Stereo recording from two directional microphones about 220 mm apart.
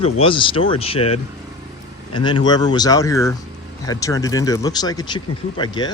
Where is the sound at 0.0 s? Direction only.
25° left (ahead or behind).